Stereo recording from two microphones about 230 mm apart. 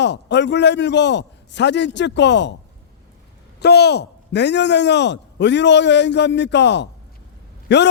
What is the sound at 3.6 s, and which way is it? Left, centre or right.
A man's voice, left.